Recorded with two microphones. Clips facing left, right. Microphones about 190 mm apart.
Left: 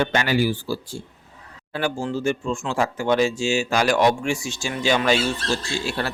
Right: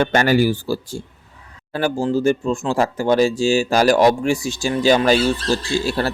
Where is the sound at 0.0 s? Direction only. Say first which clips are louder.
Right 5 dB; 45° right (ahead or behind).